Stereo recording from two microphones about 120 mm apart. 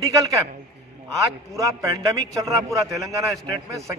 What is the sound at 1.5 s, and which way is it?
Speech, 30° right (ahead or behind).